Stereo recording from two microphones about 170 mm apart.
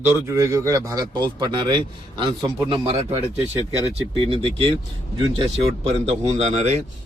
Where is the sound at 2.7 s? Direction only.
35° right (ahead or behind).